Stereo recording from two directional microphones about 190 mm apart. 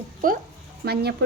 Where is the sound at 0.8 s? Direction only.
55° right (ahead or behind).